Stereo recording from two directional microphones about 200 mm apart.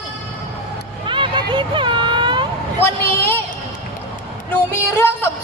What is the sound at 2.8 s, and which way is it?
Speech, 10° left (ahead or behind).